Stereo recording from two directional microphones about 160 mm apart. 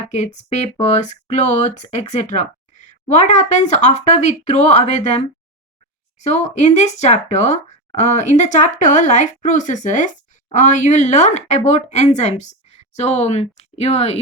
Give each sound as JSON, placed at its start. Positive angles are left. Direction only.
{"t": 0.5, "sound": "speech", "side_deg": 45}